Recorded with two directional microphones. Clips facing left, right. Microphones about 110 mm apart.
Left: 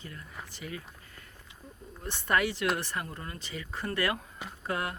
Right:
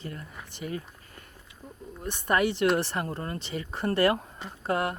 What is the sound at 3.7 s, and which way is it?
Speech, 30° right (ahead or behind).